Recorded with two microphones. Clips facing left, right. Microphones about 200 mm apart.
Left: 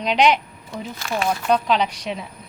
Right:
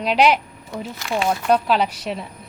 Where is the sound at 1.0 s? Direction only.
20° right (ahead or behind).